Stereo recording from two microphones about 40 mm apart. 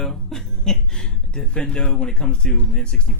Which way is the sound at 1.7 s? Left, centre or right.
Left.